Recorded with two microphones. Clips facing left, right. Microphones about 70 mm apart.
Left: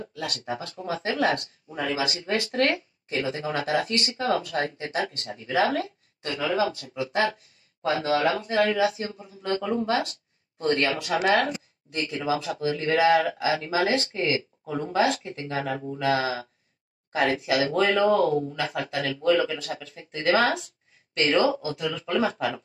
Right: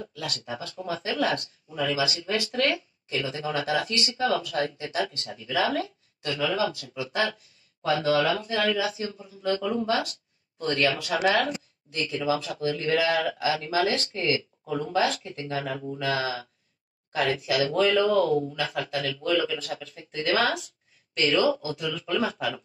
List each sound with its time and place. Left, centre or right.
0.0 s speech: left
21.4 s speech: left